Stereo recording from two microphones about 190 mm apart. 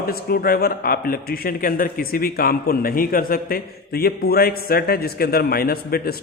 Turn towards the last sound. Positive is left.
turn(degrees=55)  # may be behind; listen again after turning